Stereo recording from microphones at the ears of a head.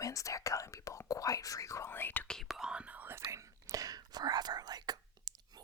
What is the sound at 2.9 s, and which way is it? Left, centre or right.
Whispering, right.